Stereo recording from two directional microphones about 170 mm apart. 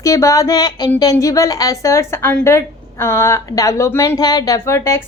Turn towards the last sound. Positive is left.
turn(degrees=15)  # may be behind; listen again after turning